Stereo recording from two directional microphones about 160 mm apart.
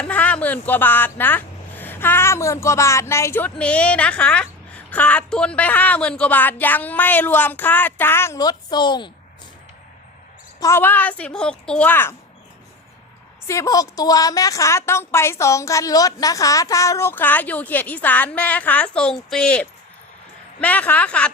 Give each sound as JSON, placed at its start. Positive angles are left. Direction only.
{"t": 0.0, "sound": "speech", "side_deg": 10}
{"t": 10.6, "sound": "speech", "side_deg": 15}
{"t": 13.5, "sound": "speech", "side_deg": 20}